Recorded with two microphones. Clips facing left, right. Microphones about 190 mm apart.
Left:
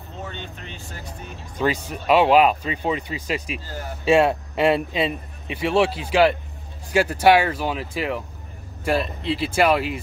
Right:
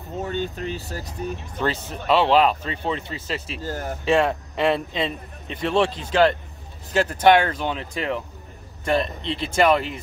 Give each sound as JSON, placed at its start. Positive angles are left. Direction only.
{"t": 0.3, "sound": "speech", "side_deg": -40}
{"t": 1.6, "sound": "a man's voice", "side_deg": 10}